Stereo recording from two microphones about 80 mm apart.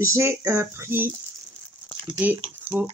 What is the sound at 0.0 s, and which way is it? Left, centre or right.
Speech, right.